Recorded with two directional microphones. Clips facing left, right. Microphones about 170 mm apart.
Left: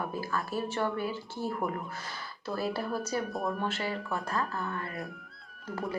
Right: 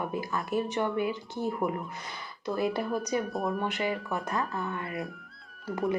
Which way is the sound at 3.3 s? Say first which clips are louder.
Right 2 dB; centre (ahead or behind).